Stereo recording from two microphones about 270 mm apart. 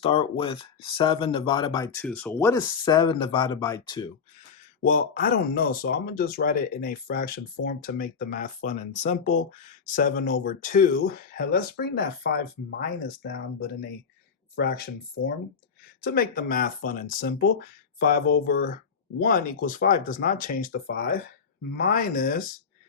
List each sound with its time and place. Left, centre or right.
0.0 s speech: left
4.8 s speech: left